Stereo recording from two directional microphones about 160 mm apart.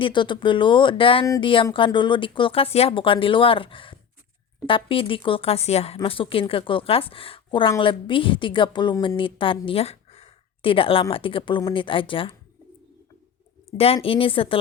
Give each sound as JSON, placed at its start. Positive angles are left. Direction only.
{"t": 0.0, "sound": "speech", "side_deg": 30}
{"t": 9.6, "sound": "a sound", "side_deg": 40}
{"t": 11.1, "sound": "speech", "side_deg": 35}
{"t": 13.7, "sound": "speech", "side_deg": 40}